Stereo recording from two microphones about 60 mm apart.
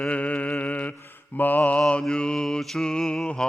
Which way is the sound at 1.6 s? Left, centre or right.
Centre.